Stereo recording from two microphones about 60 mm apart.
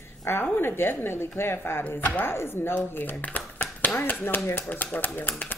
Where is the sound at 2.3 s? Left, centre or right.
Left.